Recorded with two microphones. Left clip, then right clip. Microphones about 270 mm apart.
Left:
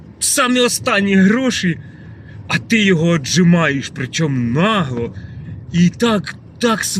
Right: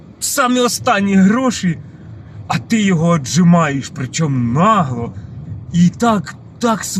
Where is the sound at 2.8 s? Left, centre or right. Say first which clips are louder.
Left 1 dB; right.